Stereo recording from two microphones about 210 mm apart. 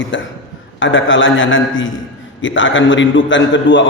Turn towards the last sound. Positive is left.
turn(degrees=60)  # may be behind; listen again after turning